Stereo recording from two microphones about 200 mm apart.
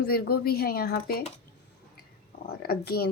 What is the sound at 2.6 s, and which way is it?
Speech, 50° left (ahead or behind).